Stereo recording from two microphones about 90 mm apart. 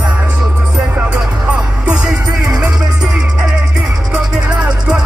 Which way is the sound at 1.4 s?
10° right (ahead or behind).